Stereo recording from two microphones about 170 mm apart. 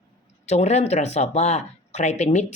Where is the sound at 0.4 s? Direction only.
40° left (ahead or behind).